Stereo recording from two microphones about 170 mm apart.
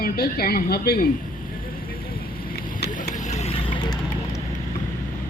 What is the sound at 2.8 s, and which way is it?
Vehicle, 75° left (ahead or behind).